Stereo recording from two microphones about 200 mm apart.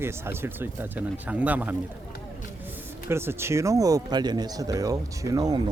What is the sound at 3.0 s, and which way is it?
Speech, 10° right (ahead or behind).